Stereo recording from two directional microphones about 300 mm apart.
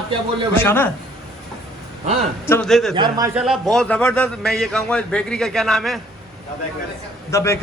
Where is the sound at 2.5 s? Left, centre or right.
Centre.